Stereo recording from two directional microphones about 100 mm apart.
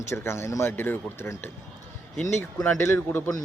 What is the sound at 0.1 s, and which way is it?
A man's voice, 25° left (ahead or behind).